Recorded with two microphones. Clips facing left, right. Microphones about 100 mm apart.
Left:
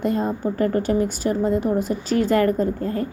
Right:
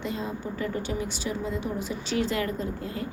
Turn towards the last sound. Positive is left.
turn(degrees=45)  # may be behind; listen again after turning